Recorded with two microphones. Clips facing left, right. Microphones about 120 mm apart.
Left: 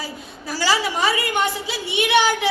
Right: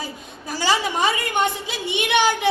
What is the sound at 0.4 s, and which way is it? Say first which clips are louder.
A woman's voice: even; 20° right (ahead or behind).